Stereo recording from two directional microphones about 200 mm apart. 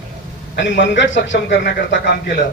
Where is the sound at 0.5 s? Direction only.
65° left (ahead or behind).